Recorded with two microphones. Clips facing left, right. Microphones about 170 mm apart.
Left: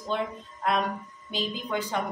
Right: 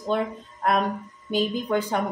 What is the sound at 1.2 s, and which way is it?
Speech, 50° right (ahead or behind).